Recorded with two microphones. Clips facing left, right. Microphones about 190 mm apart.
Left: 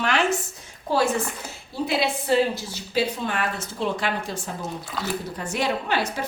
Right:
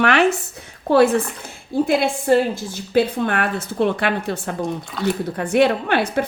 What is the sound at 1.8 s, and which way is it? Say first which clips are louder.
A woman's voice: right 4 dB; 50° right (ahead or behind).